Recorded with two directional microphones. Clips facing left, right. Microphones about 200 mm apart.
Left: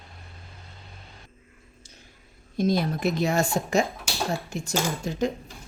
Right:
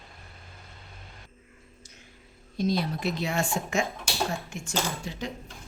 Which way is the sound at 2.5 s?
50° left (ahead or behind).